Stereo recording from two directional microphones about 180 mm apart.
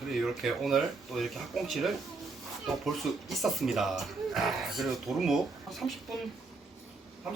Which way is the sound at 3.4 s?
Centre (ahead or behind).